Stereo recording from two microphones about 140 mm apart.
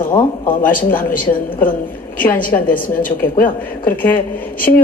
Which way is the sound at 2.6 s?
80° left.